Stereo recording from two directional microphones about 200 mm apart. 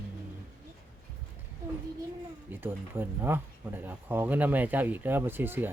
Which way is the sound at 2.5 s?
10° right (ahead or behind).